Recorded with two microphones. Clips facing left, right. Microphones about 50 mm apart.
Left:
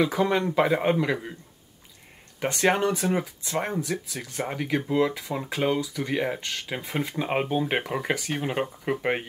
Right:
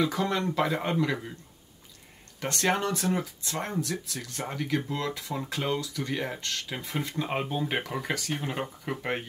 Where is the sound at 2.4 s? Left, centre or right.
Centre.